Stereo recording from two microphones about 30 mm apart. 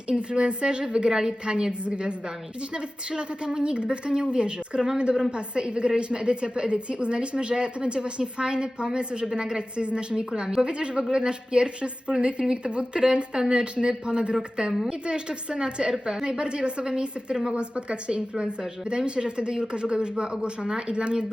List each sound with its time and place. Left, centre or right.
0.2 s a woman's voice: right
1.8 s a woman's voice: right
16.4 s speech: right